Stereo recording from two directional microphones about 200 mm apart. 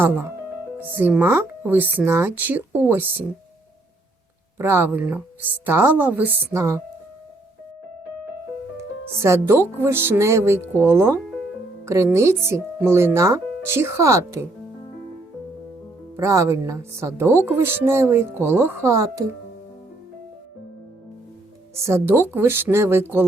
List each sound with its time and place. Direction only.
0.0 s speech: 10° right (ahead or behind)
4.5 s speech: 10° right (ahead or behind)
8.8 s speech: 15° right (ahead or behind)
16.1 s speech: 15° right (ahead or behind)
21.8 s speech: 15° right (ahead or behind)